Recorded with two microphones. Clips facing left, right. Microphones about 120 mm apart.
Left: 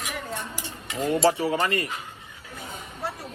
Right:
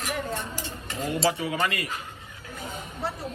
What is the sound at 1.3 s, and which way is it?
Speech, 30° left (ahead or behind).